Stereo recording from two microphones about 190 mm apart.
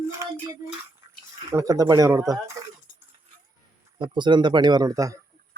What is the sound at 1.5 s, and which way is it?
Speech, 20° right (ahead or behind).